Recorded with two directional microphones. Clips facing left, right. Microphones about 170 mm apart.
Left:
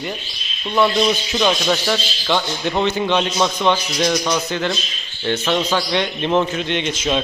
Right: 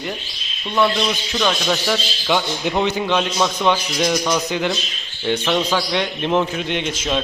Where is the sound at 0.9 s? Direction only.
10° left (ahead or behind).